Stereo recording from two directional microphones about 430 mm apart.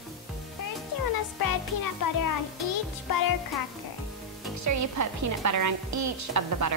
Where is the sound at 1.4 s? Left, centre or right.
Left.